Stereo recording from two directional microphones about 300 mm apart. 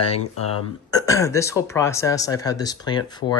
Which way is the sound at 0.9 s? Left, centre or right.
Centre.